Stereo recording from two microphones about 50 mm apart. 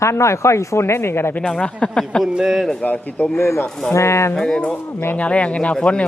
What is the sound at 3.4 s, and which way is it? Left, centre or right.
Speech, left.